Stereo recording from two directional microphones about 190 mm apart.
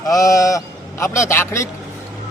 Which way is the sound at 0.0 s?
15° left (ahead or behind).